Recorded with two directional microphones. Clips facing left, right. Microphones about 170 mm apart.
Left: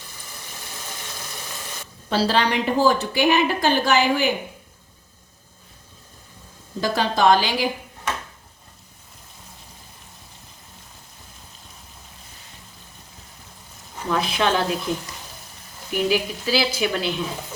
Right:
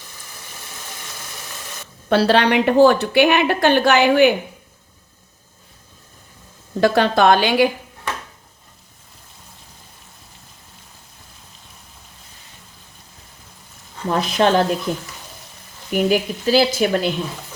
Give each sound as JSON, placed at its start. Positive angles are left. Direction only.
{"t": 2.0, "sound": "a woman's voice", "side_deg": -60}
{"t": 6.7, "sound": "a woman's voice", "side_deg": -65}
{"t": 14.1, "sound": "speech", "side_deg": -40}
{"t": 15.9, "sound": "speech", "side_deg": -50}